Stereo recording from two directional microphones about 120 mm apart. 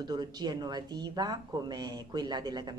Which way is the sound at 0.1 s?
35° right (ahead or behind).